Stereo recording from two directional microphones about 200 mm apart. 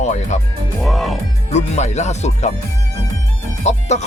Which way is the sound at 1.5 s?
35° left (ahead or behind).